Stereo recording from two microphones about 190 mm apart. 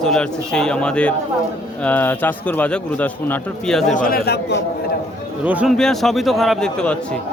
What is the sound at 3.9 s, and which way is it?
Speech, 50° left (ahead or behind).